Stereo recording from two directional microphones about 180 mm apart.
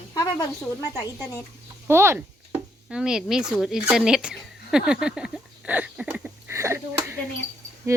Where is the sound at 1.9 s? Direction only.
15° right (ahead or behind).